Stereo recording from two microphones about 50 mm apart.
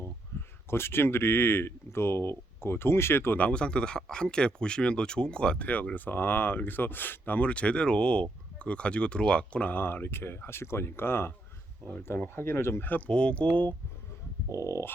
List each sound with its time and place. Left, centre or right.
0.0 s speech: left
3.3 s speech: left
5.6 s speech: left
9.7 s speech: left
12.8 s speech: left
13.1 s speech: left
14.5 s dog: left